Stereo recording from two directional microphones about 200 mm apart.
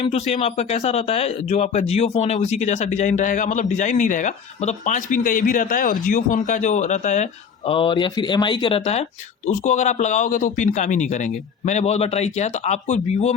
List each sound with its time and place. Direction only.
0.0 s speech: 30° left (ahead or behind)
7.7 s speech: 25° left (ahead or behind)